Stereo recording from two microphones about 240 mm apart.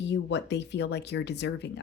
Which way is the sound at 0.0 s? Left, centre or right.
Left.